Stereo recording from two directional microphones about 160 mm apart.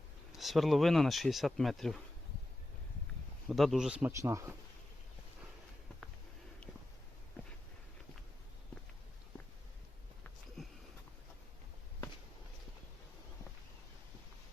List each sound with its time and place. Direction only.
0.3 s speech: centre (ahead or behind)
3.5 s speech: centre (ahead or behind)
4.1 s speech: 20° right (ahead or behind)